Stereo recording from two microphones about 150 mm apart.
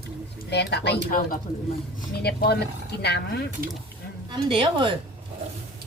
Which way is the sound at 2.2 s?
90° left.